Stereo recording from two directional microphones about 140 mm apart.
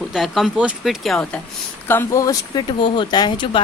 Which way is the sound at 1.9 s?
20° left (ahead or behind).